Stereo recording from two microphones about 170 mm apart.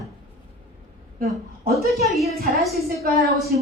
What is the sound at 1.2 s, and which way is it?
Speech, 60° right (ahead or behind).